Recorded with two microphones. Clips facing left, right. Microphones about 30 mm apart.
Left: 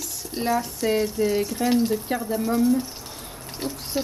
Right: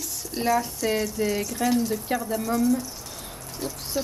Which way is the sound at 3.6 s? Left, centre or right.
Left.